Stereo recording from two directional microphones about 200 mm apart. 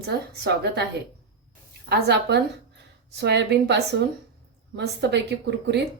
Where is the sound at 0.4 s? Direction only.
55° right (ahead or behind).